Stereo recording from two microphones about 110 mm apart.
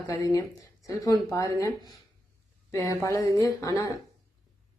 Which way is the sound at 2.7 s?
30° left (ahead or behind).